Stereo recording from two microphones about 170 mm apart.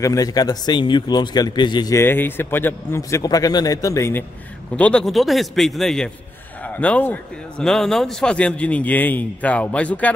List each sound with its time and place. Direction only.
0.0 s speech: 20° left (ahead or behind)
4.7 s speech: 5° left (ahead or behind)